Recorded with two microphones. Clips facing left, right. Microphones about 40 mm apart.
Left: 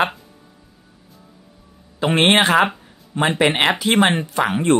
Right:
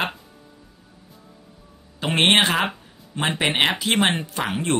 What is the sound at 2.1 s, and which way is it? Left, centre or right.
Speech, left.